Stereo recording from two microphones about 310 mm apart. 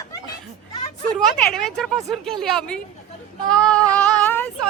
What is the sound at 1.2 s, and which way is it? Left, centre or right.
A woman's voice, centre.